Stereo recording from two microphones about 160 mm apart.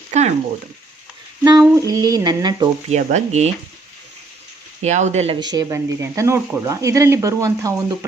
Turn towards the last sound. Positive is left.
turn(degrees=-20)  # may be behind; listen again after turning